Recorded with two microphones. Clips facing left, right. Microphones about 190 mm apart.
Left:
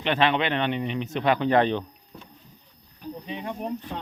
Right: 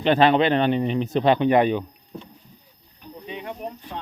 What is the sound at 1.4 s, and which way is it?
Speech, 15° right (ahead or behind).